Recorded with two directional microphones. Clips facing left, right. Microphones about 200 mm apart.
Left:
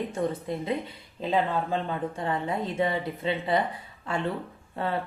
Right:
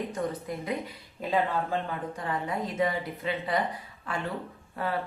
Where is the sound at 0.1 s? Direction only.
25° left (ahead or behind).